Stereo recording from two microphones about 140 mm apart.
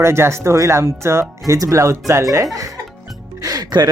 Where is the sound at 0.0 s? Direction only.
20° right (ahead or behind).